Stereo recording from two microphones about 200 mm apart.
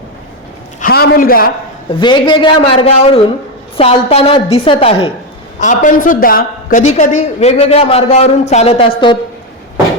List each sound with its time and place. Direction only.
0.8 s a man's voice: 45° left (ahead or behind)
1.9 s a woman's voice: 20° left (ahead or behind)